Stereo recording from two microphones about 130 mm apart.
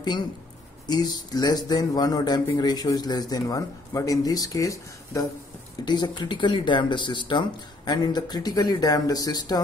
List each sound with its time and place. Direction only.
0.8 s speech: 30° left (ahead or behind)